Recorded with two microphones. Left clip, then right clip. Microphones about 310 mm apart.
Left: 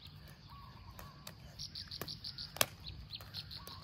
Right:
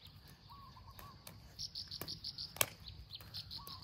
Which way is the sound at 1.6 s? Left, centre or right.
Right.